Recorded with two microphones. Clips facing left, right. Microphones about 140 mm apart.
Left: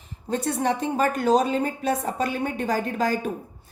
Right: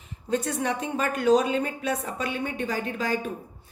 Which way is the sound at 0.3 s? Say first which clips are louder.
Left 2 dB; 35° left (ahead or behind).